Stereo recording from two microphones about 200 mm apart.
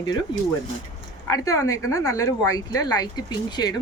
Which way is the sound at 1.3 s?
15° left (ahead or behind).